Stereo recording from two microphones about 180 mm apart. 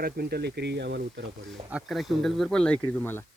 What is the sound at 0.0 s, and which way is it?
Speech, 60° right (ahead or behind).